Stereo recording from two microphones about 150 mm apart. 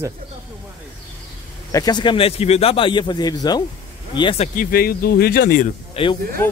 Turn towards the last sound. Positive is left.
turn(degrees=15)  # may be behind; listen again after turning